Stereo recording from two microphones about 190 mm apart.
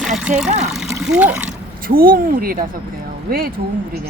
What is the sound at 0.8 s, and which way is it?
Speech, 5° right (ahead or behind).